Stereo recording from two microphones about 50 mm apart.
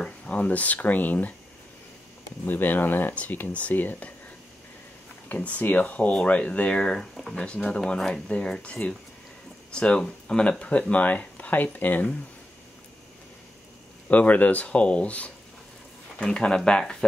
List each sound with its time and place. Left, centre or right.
0.0 s speech: left
2.4 s speech: left
5.3 s speech: left
14.0 s speech: left